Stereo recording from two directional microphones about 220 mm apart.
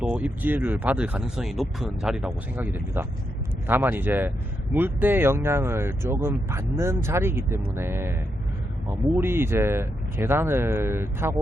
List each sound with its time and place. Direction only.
0.0 s speech: 5° right (ahead or behind)
9.1 s speech: 10° right (ahead or behind)